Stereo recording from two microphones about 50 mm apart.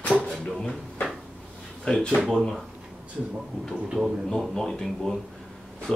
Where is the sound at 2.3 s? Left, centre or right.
Centre.